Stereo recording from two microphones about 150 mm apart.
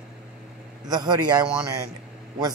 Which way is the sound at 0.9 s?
25° right (ahead or behind).